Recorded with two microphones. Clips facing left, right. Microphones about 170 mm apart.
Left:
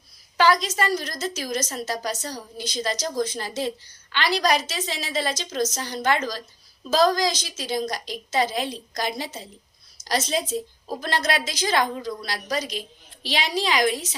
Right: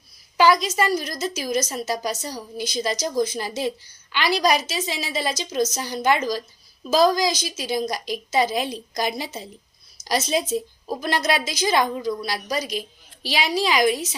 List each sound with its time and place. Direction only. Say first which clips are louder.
0.3 s a woman's voice: right 2 dB; 10° right (ahead or behind)